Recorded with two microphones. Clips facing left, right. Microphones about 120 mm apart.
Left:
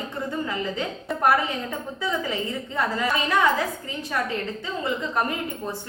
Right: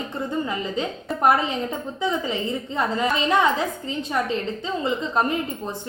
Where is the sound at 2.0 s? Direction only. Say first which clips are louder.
Right 3 dB; 20° right (ahead or behind).